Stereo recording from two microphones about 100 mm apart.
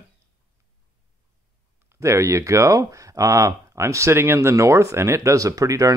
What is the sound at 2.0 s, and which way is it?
Speech, 30° right (ahead or behind).